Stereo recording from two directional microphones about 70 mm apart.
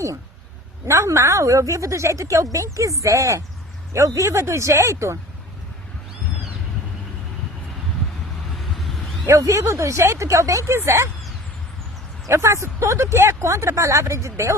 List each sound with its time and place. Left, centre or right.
0.9 s speech: right
9.2 s speech: right
12.3 s speech: right